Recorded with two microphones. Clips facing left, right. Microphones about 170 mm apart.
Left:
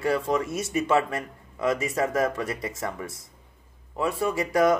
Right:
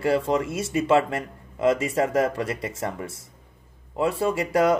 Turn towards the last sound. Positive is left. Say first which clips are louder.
# right 1 dB
turn(degrees=-30)  # may be behind; listen again after turning